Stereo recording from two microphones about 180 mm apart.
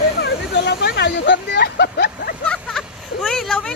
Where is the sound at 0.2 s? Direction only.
70° left (ahead or behind).